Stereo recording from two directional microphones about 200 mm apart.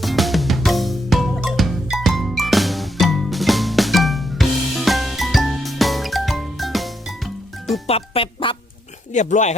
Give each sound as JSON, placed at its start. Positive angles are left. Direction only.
{"t": 0.0, "sound": "music", "side_deg": 0}
{"t": 7.9, "sound": "music", "side_deg": 30}
{"t": 9.1, "sound": "speech", "side_deg": 35}